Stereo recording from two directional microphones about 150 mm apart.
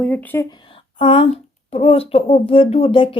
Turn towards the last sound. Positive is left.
turn(degrees=35)  # may be behind; listen again after turning